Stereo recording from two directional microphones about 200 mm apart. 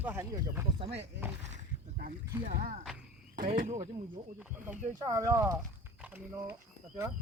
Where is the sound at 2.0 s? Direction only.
45° right (ahead or behind).